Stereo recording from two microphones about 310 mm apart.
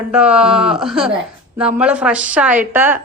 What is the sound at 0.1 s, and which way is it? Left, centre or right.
A woman's voice, centre.